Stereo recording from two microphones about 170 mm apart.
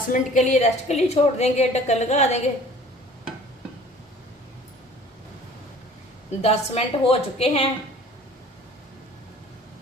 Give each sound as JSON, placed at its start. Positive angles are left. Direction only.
{"t": 0.1, "sound": "a woman's voice", "side_deg": 45}
{"t": 6.4, "sound": "a woman's voice", "side_deg": 35}